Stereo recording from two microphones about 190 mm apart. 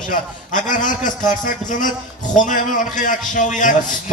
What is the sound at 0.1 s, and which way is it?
A man's voice, 45° left (ahead or behind).